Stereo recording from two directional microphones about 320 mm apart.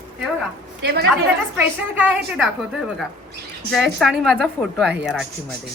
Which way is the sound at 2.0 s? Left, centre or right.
Centre.